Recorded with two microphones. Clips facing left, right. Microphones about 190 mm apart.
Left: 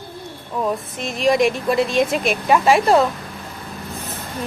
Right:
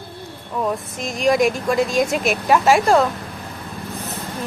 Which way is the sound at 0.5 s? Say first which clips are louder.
Even; centre (ahead or behind).